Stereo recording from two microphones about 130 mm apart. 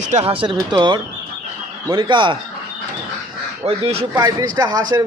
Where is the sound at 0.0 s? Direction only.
60° right (ahead or behind).